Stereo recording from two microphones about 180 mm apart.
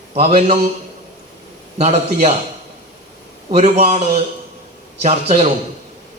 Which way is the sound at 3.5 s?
40° right (ahead or behind).